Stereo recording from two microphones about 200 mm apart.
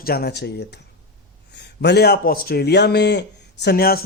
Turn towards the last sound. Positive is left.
turn(degrees=50)  # may be behind; listen again after turning